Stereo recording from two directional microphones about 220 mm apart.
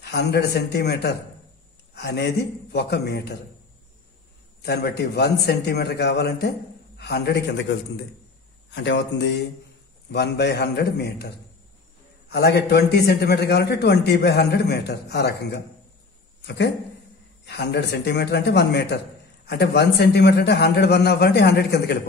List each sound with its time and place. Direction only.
0.0 s a man's voice: 50° left (ahead or behind)
4.6 s a man's voice: 45° left (ahead or behind)
8.7 s a man's voice: 55° left (ahead or behind)